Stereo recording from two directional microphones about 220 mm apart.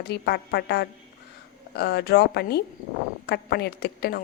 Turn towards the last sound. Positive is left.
turn(degrees=45)  # may be behind; listen again after turning